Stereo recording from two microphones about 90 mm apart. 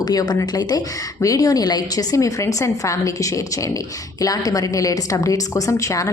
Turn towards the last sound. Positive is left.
turn(degrees=35)  # may be behind; listen again after turning